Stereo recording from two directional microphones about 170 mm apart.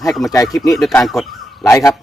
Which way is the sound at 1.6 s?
20° left (ahead or behind).